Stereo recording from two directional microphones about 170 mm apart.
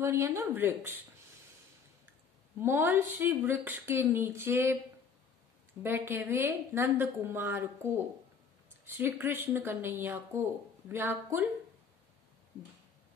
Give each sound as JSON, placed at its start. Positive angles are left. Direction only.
{"t": 0.0, "sound": "speech", "side_deg": -15}
{"t": 2.6, "sound": "speech", "side_deg": -10}
{"t": 5.8, "sound": "speech", "side_deg": -10}